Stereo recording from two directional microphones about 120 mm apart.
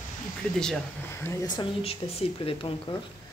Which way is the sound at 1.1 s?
20° left (ahead or behind).